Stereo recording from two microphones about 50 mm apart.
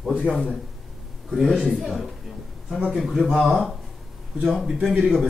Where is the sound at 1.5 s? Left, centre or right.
Left.